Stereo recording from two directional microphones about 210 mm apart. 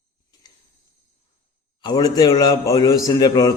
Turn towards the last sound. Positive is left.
turn(degrees=20)  # may be behind; listen again after turning